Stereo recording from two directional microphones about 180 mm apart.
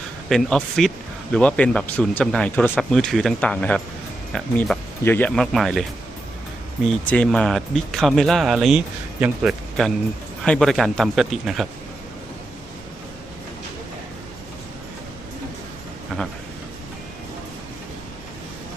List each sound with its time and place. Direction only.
0.3 s speech: centre (ahead or behind)
6.8 s speech: 5° left (ahead or behind)